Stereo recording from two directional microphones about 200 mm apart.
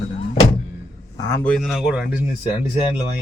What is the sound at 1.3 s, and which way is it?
Speech, 5° left (ahead or behind).